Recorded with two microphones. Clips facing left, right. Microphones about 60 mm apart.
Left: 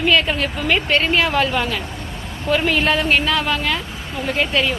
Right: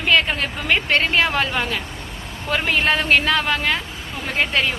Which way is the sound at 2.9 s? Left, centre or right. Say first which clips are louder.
Even; right.